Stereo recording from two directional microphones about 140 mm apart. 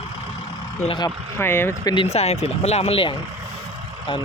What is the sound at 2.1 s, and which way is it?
Speech, 50° left (ahead or behind).